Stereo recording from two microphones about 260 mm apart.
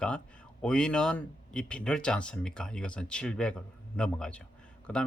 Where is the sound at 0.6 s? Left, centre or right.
Centre.